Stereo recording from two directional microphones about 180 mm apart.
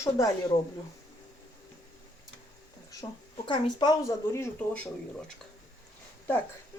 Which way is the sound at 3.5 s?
25° left (ahead or behind).